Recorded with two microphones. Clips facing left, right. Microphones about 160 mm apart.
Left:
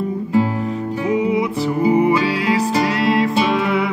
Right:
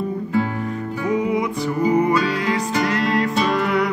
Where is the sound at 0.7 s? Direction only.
25° left (ahead or behind).